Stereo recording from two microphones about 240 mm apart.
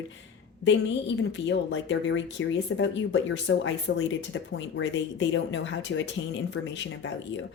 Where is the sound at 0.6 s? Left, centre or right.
Left.